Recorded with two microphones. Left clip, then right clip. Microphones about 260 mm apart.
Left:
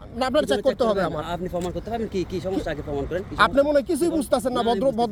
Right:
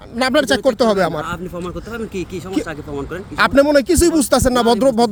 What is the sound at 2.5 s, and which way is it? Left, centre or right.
Speech, right.